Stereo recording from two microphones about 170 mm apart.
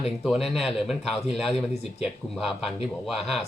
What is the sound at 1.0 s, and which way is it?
Speech, 35° left (ahead or behind).